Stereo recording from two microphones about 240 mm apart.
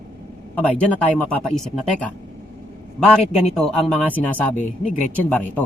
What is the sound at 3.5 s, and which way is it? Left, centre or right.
Speech, centre.